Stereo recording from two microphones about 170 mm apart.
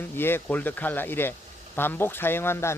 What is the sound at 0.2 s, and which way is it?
Speech, 15° left (ahead or behind).